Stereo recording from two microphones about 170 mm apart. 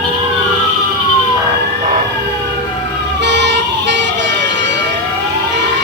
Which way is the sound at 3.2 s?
90° right.